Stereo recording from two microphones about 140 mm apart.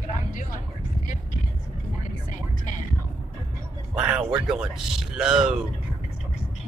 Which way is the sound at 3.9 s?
10° right (ahead or behind).